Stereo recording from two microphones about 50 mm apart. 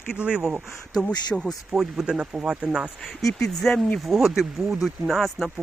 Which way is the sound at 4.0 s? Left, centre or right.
Centre.